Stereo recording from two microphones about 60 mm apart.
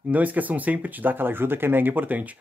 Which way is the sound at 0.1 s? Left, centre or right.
Right.